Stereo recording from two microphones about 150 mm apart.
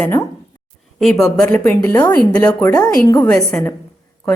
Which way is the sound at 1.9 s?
25° left (ahead or behind).